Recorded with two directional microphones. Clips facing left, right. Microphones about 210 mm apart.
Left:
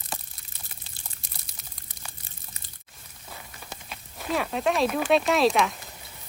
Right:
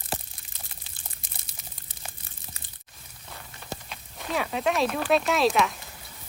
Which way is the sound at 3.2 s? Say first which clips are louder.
Right 3 dB; 5° left (ahead or behind).